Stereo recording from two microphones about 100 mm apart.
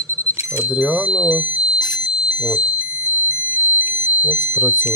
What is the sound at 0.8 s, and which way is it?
Speech, 15° right (ahead or behind).